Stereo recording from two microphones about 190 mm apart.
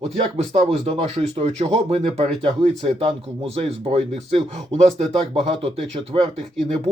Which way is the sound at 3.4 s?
30° right (ahead or behind).